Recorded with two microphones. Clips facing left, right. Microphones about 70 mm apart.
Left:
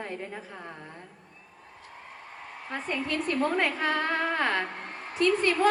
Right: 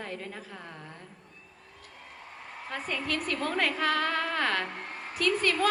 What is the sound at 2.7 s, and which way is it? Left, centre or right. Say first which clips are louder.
A woman's voice: left 2 dB; left.